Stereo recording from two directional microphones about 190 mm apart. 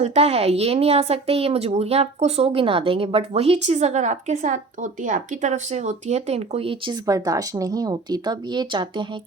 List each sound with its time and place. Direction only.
0.0 s a woman's voice: 35° right (ahead or behind)